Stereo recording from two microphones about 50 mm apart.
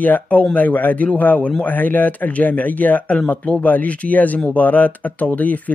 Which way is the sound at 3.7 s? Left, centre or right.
Left.